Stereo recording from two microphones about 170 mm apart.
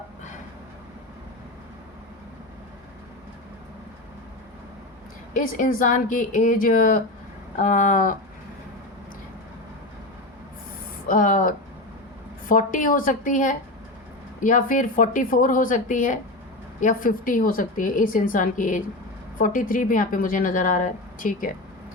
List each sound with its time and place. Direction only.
5.3 s speech: 50° left (ahead or behind)
11.1 s speech: 50° left (ahead or behind)